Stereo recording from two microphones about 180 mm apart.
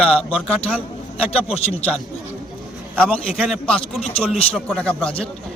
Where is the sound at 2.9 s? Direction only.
5° left (ahead or behind).